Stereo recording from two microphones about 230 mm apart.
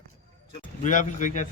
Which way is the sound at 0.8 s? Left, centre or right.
Left.